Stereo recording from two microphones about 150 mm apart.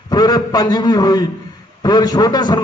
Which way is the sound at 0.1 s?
25° left (ahead or behind).